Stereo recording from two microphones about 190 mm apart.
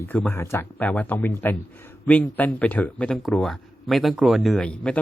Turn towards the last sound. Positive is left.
turn(degrees=5)  # may be behind; listen again after turning